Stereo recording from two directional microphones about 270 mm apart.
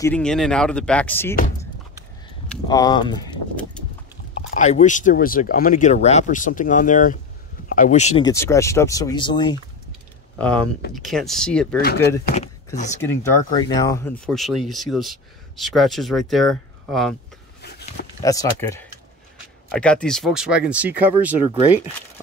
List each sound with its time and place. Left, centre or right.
0.0 s speech: centre
2.4 s speech: centre
4.6 s speech: left
8.3 s speech: centre
11.1 s speech: centre
11.8 s speech: left
12.3 s speech: left
13.0 s speech: centre
17.6 s a sound: left
18.2 s speech: centre